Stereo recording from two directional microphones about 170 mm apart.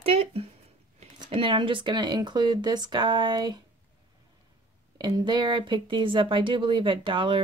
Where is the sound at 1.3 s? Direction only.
30° right (ahead or behind).